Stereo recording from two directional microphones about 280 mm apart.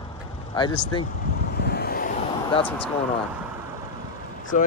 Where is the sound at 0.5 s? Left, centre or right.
Centre.